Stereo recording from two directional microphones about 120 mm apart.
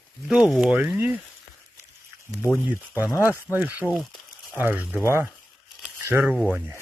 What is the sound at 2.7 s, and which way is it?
Speech, 15° right (ahead or behind).